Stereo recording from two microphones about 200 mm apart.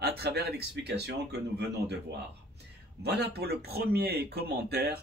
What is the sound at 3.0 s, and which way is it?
Speech, 55° right (ahead or behind).